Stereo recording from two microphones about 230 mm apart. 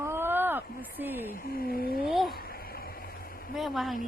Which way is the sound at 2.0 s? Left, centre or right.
Centre.